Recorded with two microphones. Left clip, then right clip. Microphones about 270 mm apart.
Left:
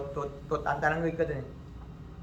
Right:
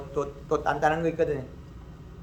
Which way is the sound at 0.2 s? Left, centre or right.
Right.